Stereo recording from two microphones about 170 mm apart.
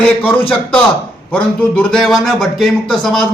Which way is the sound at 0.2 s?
10° left (ahead or behind).